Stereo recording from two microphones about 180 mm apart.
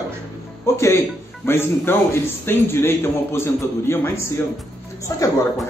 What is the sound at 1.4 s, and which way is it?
Speech, 15° left (ahead or behind).